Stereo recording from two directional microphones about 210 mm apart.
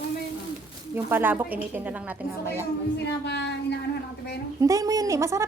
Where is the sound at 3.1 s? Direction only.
55° left (ahead or behind).